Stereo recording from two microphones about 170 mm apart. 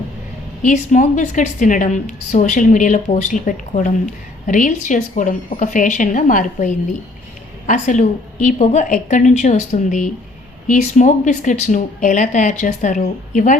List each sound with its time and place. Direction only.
0.6 s a woman's voice: 45° left (ahead or behind)